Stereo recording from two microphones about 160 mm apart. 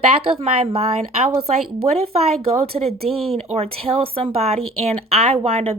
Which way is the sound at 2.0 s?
40° right (ahead or behind).